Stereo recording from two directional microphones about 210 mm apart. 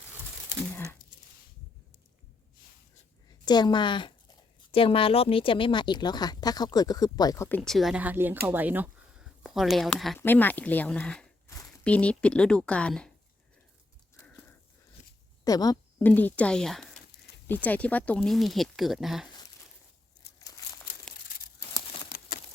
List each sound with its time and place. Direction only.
0.7 s a sound: 10° left (ahead or behind)
3.4 s speech: 20° left (ahead or behind)
15.4 s a woman's voice: 20° left (ahead or behind); by 19.3 s centre (ahead or behind)